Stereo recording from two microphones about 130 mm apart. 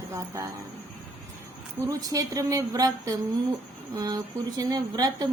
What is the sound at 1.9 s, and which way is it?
Speech, 30° right (ahead or behind).